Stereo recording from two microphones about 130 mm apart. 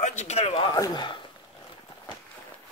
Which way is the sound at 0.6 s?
30° left (ahead or behind).